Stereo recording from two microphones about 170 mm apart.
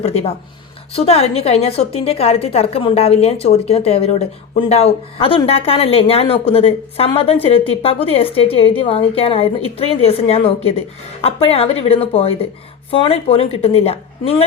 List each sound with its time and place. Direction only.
0.0 s a woman's voice: 35° left (ahead or behind)